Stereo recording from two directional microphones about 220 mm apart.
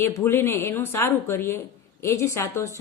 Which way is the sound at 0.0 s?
10° left (ahead or behind).